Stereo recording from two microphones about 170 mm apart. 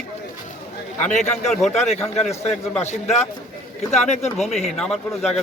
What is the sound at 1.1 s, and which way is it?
Speech, 45° left (ahead or behind).